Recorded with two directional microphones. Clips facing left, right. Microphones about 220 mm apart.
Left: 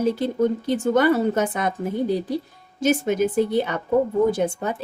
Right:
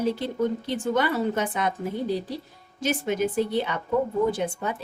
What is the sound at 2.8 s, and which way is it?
Speech, 45° left (ahead or behind).